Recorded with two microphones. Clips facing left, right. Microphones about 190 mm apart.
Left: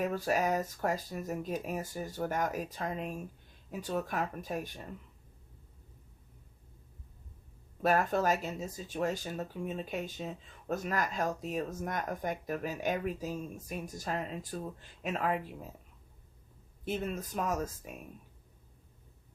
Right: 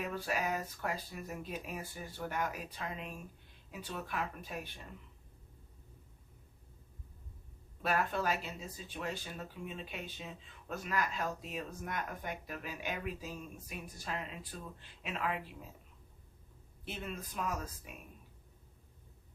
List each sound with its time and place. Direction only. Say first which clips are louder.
0.0 s speech: left 6 dB; 45° left (ahead or behind)
7.8 s speech: left 6 dB; 45° left (ahead or behind)
16.8 s speech: left 8 dB; 45° left (ahead or behind)